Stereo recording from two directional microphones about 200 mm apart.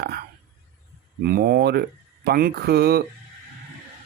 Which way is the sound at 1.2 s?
50° right (ahead or behind).